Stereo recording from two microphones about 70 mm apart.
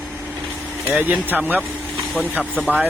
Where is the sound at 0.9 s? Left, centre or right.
Right.